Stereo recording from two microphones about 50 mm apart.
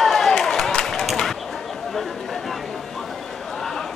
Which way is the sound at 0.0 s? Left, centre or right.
Centre.